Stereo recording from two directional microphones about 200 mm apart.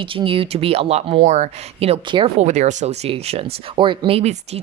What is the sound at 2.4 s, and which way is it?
Speech, 35° right (ahead or behind).